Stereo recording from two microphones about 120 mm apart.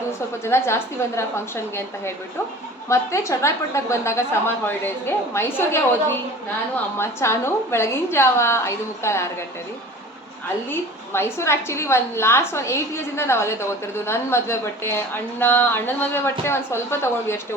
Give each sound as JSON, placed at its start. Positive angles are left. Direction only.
{"t": 0.4, "sound": "a woman's voice", "side_deg": 20}
{"t": 10.7, "sound": "a woman's voice", "side_deg": 20}